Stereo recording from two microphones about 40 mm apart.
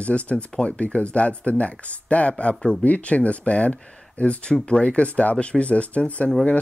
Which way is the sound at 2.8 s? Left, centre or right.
Left.